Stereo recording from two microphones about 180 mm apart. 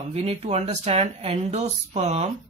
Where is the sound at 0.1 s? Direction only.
35° right (ahead or behind).